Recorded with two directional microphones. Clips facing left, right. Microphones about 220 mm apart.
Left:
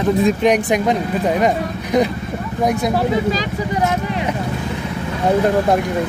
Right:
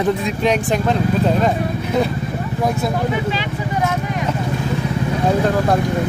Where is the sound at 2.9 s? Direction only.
35° left (ahead or behind).